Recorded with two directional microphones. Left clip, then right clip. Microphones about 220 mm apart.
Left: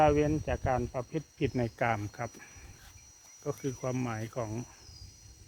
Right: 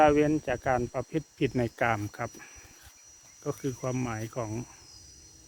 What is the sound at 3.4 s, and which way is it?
Cricket, 15° right (ahead or behind).